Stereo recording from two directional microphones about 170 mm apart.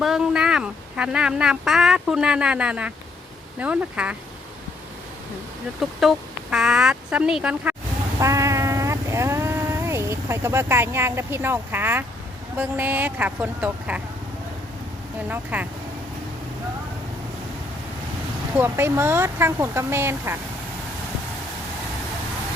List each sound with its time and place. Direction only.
0.0 s speech: 5° right (ahead or behind)
6.0 s speech: centre (ahead or behind)
8.2 s a sound: 20° right (ahead or behind)
12.5 s speech: 10° right (ahead or behind)
15.3 s speech: 10° right (ahead or behind)
18.5 s speech: 15° right (ahead or behind)